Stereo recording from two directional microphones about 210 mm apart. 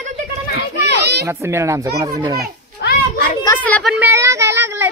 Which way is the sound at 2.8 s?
45° left (ahead or behind).